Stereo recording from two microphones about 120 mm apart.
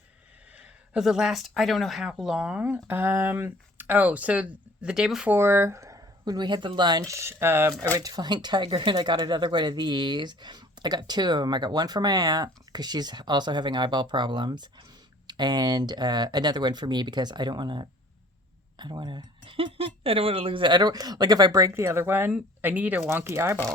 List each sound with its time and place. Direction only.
0.5 s speech: 5° right (ahead or behind)
5.3 s speech: 20° right (ahead or behind)
7.9 s speech: 30° right (ahead or behind)